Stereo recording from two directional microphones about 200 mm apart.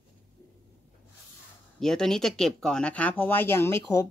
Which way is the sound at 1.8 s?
Centre (ahead or behind).